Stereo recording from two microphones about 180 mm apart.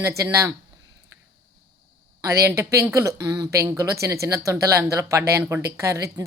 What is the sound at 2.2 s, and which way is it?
Speech, 15° right (ahead or behind).